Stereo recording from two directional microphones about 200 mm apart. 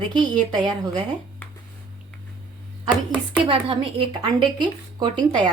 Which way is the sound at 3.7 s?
25° right (ahead or behind).